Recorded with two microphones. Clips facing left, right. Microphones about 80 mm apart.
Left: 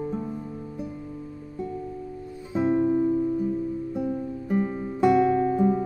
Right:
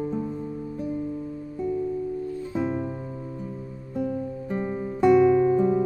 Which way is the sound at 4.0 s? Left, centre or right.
Centre.